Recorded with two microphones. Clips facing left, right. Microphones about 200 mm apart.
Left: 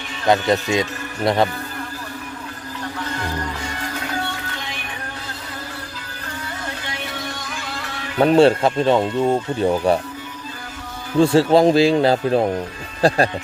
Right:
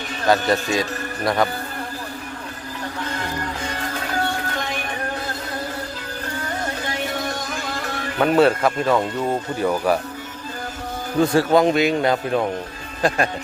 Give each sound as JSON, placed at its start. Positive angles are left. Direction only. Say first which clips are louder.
{"t": 0.3, "sound": "speech", "louder": "left 2 dB", "side_deg": 20}
{"t": 6.8, "sound": "music", "louder": "right 4 dB", "side_deg": -45}
{"t": 8.2, "sound": "speech", "louder": "left 3 dB", "side_deg": 30}
{"t": 11.2, "sound": "speech", "louder": "left 3 dB", "side_deg": 25}